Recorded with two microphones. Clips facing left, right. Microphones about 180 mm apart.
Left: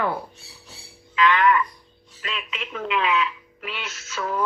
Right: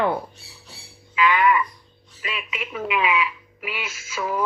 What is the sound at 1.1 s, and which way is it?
Speech, 10° right (ahead or behind).